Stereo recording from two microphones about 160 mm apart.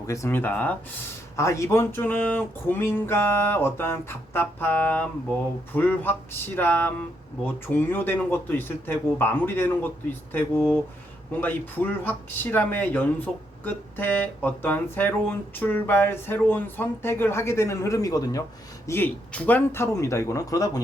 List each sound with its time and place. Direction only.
0.1 s speech: 15° left (ahead or behind)
18.9 s speech: 10° left (ahead or behind)